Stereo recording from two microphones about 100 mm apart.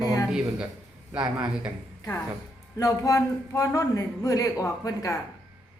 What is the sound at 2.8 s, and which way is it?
A man's voice, 35° left (ahead or behind).